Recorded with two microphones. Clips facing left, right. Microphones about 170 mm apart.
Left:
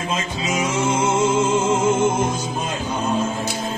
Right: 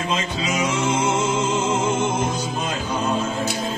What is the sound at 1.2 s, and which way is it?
Music, 50° left (ahead or behind).